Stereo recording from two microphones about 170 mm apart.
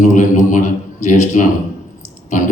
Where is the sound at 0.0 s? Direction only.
45° left (ahead or behind).